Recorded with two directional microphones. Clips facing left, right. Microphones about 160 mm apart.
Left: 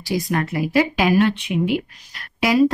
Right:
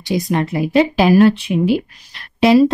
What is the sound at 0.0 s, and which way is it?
A woman's voice, 20° right (ahead or behind).